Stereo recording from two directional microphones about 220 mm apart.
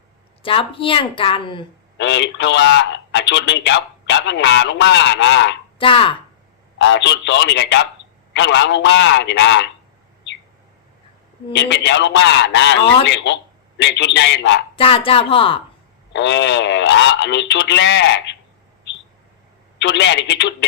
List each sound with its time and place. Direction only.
0.4 s a woman's voice: 25° left (ahead or behind)
2.0 s speech: 50° left (ahead or behind)
5.8 s a woman's voice: 25° left (ahead or behind)
6.7 s speech: 50° left (ahead or behind)
11.5 s speech: 55° left (ahead or behind)
14.8 s a woman's voice: 25° left (ahead or behind)
16.1 s speech: 55° left (ahead or behind)
19.8 s speech: 50° left (ahead or behind)